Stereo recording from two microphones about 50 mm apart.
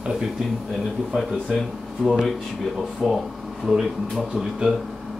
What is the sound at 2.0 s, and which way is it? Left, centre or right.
Speech, centre.